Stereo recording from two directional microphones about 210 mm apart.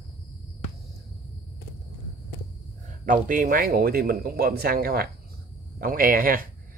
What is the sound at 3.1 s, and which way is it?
Speech, 40° right (ahead or behind).